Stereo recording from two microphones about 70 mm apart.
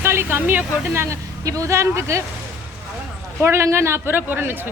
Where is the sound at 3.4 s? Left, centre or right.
Right.